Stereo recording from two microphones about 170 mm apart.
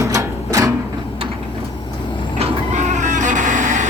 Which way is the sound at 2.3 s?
40° right (ahead or behind).